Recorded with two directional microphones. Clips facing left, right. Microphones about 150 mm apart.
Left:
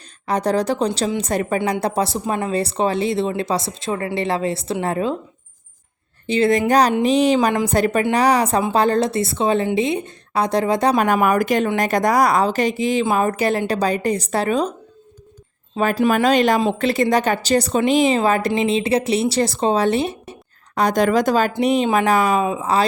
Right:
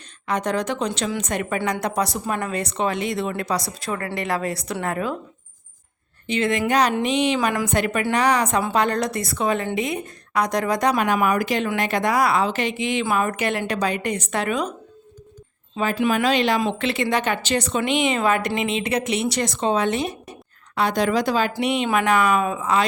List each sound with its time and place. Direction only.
0.3 s speech: 35° left (ahead or behind)
6.2 s speech: 35° left (ahead or behind)
10.9 s speech: 50° left (ahead or behind); by 14.7 s 35° left (ahead or behind)
15.8 s speech: 45° left (ahead or behind)
16.6 s speech: 35° left (ahead or behind)
20.7 s speech: 45° left (ahead or behind)
21.6 s speech: 35° left (ahead or behind)